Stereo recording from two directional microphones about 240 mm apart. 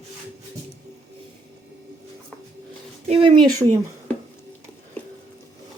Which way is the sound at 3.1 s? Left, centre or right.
Right.